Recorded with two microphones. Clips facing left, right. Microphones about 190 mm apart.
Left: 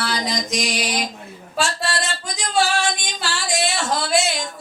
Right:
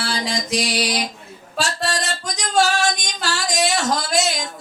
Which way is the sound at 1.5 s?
40° right (ahead or behind).